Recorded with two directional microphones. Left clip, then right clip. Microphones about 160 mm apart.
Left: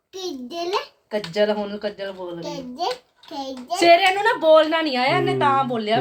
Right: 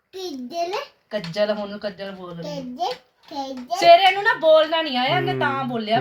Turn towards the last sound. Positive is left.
turn(degrees=25)  # may be behind; listen again after turning